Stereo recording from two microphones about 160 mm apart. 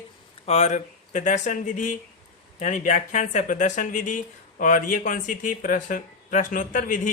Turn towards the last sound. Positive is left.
turn(degrees=55)  # may be behind; listen again after turning